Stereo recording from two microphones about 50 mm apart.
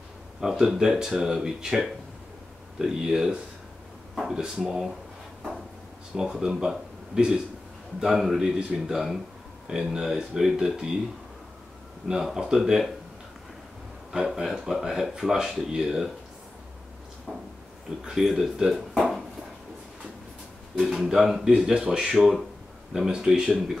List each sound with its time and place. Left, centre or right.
0.4 s speech: centre
6.3 s a man's voice: centre
8.0 s a man's voice: centre
12.1 s speech: centre
14.1 s speech: centre
17.3 s a man's voice: centre
18.9 s a sound: centre
20.7 s a man's voice: centre